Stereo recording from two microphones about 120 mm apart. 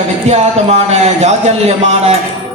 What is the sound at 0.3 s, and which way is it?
Speech, 65° right (ahead or behind).